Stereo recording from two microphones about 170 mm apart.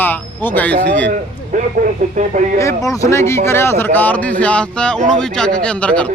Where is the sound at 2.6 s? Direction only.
20° left (ahead or behind).